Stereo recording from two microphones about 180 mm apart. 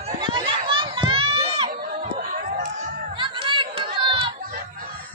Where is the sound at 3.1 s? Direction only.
25° right (ahead or behind).